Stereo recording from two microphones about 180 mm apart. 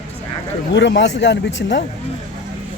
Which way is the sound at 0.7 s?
85° left.